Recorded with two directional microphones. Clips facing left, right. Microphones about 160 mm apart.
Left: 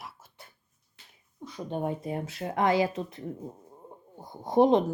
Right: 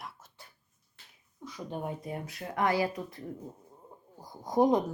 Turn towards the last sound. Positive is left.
turn(degrees=25)  # may be behind; listen again after turning